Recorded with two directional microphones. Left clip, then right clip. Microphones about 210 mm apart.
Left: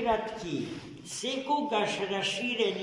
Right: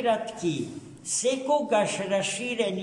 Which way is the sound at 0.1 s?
15° right (ahead or behind).